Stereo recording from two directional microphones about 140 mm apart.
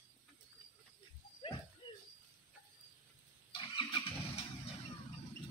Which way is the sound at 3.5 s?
35° left (ahead or behind).